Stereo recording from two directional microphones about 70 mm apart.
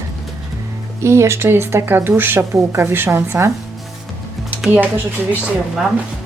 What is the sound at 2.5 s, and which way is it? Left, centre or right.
Speech, right.